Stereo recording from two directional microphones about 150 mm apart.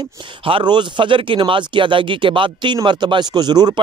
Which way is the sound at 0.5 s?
35° right (ahead or behind).